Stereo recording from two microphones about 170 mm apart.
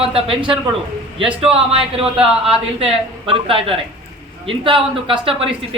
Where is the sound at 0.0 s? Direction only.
35° right (ahead or behind).